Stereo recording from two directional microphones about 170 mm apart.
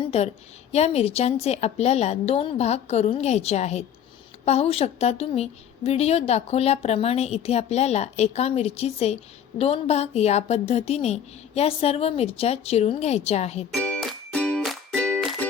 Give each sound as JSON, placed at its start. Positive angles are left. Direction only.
{"t": 0.0, "sound": "a sound", "side_deg": 35}
{"t": 0.7, "sound": "a woman's voice", "side_deg": 40}
{"t": 13.7, "sound": "music", "side_deg": 5}